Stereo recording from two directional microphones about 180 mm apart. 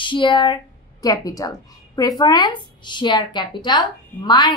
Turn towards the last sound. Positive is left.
turn(degrees=25)  # may be behind; listen again after turning